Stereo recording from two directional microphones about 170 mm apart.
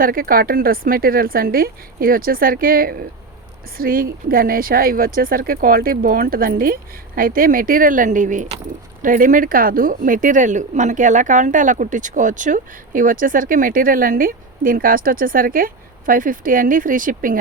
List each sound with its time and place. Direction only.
0.0 s speech: 55° right (ahead or behind)